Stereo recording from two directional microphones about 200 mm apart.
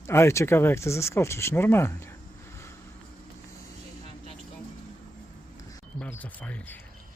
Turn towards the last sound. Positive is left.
turn(degrees=5)  # may be behind; listen again after turning